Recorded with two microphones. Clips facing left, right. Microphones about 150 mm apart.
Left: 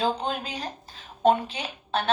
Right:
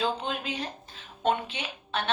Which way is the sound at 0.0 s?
40° left (ahead or behind).